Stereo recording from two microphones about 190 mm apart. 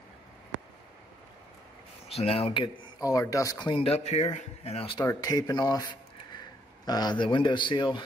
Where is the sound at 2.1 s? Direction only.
30° left (ahead or behind).